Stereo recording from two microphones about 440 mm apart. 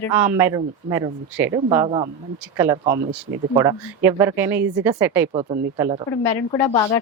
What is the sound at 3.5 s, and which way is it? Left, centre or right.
Speech, centre.